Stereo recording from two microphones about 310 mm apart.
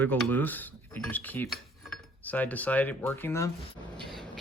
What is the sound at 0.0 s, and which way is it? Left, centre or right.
Speech, centre.